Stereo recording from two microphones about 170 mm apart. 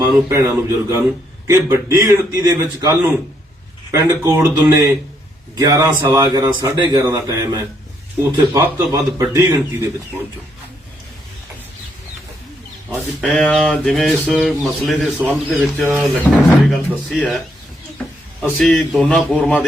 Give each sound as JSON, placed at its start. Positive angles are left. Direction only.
{"t": 0.0, "sound": "a man's voice", "side_deg": -15}
{"t": 3.9, "sound": "a man's voice", "side_deg": -15}
{"t": 13.2, "sound": "speech", "side_deg": 0}
{"t": 18.5, "sound": "speech", "side_deg": 0}